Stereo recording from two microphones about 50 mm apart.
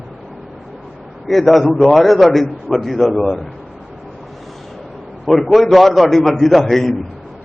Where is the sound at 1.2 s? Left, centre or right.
Centre.